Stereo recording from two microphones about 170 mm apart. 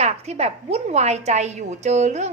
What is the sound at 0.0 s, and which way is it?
A woman's voice, 40° right (ahead or behind).